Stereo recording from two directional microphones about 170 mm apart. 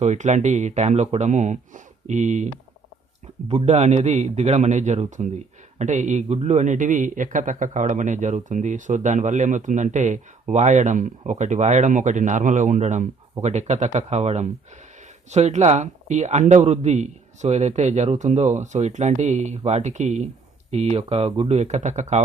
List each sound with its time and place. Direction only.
0.0 s a man's voice: 45° right (ahead or behind)
3.5 s a man's voice: 40° right (ahead or behind)